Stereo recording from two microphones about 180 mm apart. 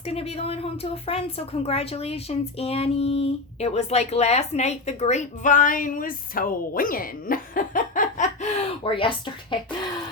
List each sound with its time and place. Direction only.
0.0 s speech: 35° left (ahead or behind)